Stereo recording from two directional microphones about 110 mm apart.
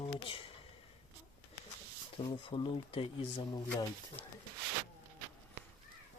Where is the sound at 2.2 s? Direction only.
50° left (ahead or behind).